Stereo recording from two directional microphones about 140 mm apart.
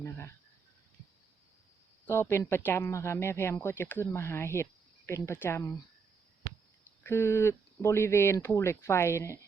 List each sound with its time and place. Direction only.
0.0 s speech: 20° left (ahead or behind)
2.0 s speech: 20° left (ahead or behind)
7.0 s speech: 20° left (ahead or behind)